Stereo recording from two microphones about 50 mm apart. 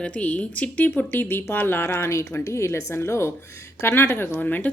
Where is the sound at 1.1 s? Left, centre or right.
Left.